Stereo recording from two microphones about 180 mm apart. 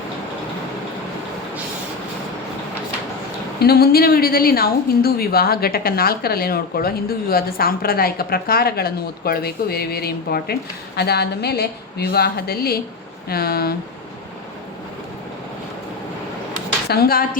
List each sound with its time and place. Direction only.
3.6 s a woman's voice: 60° left (ahead or behind)
16.9 s a woman's voice: 55° left (ahead or behind)